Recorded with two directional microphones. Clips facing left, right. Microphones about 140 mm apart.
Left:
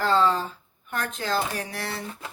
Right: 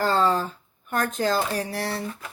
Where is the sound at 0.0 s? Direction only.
45° right (ahead or behind).